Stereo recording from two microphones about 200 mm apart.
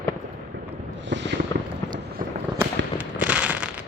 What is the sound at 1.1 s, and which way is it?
Fireworks, 60° right (ahead or behind).